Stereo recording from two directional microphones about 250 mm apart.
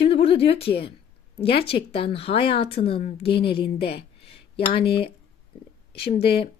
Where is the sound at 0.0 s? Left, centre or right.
Left.